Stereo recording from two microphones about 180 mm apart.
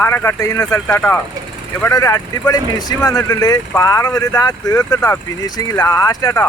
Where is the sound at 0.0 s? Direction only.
15° left (ahead or behind).